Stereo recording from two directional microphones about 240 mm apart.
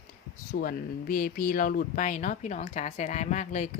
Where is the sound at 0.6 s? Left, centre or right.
Left.